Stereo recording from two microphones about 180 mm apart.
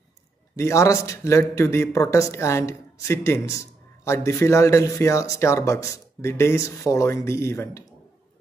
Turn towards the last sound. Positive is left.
turn(degrees=15)  # may be behind; listen again after turning